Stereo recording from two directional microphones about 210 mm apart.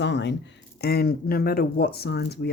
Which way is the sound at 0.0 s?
55° left (ahead or behind).